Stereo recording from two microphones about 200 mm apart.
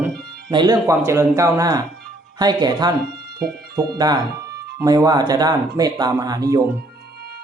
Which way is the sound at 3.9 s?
20° right (ahead or behind).